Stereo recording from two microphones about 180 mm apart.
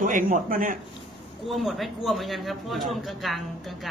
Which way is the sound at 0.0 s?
45° right (ahead or behind).